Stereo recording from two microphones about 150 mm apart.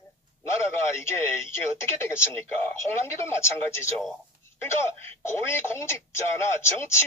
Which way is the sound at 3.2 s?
15° left (ahead or behind).